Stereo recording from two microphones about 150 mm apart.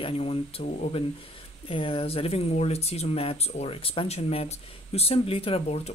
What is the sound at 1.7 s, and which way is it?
Speech, 35° left (ahead or behind).